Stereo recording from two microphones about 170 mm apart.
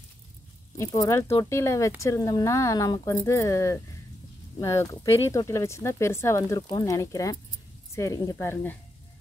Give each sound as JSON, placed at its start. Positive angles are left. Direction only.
{"t": 0.7, "sound": "speech", "side_deg": 20}